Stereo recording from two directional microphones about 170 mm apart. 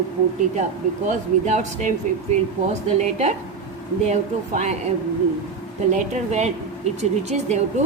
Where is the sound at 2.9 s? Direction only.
40° right (ahead or behind).